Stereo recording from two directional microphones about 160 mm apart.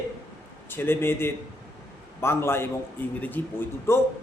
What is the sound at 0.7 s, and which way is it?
A man's voice, 15° left (ahead or behind).